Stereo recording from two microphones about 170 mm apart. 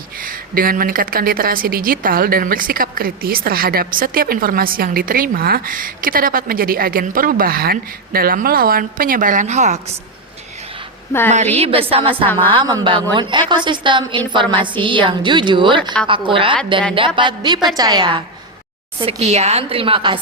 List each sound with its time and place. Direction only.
0.2 s a woman's voice: 55° right (ahead or behind)
11.3 s a woman's voice: 40° right (ahead or behind)
12.2 s a woman's voice: 10° left (ahead or behind)
12.5 s a woman's voice: 25° right (ahead or behind)
18.9 s a woman's voice: 35° right (ahead or behind)